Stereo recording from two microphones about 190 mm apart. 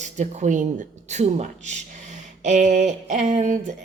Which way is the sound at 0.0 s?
40° right (ahead or behind).